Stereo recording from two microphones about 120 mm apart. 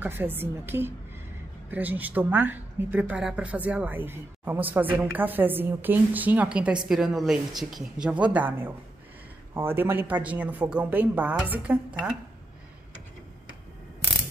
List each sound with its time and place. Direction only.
0.0 s speech: 15° right (ahead or behind)